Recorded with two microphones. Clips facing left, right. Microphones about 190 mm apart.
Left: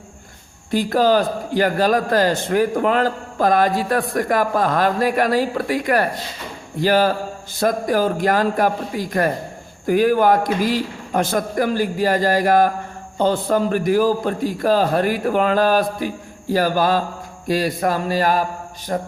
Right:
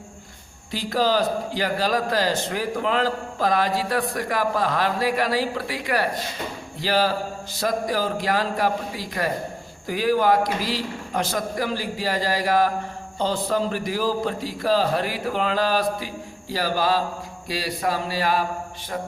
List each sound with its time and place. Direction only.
0.7 s a man's voice: 50° left (ahead or behind)